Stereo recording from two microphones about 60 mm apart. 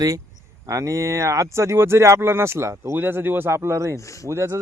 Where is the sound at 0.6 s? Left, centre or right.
Right.